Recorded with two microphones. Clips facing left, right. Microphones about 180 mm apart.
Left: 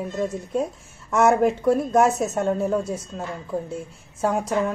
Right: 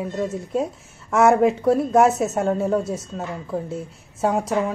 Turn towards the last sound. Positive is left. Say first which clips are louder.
# right 2 dB
turn(degrees=0)  # may be behind; listen again after turning